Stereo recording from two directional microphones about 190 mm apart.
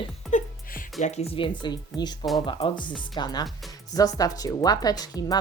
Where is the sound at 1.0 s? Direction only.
35° left (ahead or behind).